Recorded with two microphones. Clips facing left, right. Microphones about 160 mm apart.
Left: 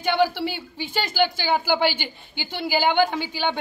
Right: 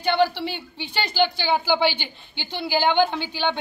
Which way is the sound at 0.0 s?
10° left (ahead or behind).